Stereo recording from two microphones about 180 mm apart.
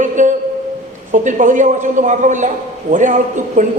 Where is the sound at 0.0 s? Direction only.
45° right (ahead or behind).